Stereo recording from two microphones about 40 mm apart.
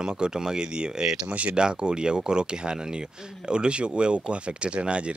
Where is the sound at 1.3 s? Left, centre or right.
Right.